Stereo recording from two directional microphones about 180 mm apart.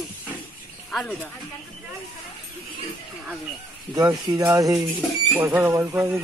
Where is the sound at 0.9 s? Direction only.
10° left (ahead or behind).